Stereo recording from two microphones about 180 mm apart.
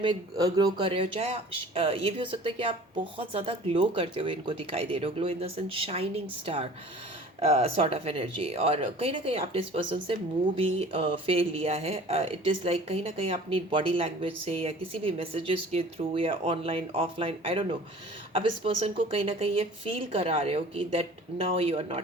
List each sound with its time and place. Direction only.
0.0 s speech: 25° right (ahead or behind)